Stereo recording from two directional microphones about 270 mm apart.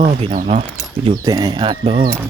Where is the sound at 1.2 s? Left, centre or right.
Centre.